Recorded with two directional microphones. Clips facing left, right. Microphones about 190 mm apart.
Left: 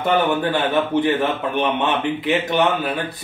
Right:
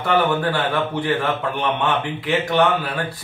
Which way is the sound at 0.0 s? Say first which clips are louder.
Left 1 dB; 20° left (ahead or behind).